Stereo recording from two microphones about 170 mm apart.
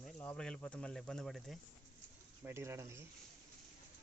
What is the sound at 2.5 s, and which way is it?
Speech, 15° right (ahead or behind).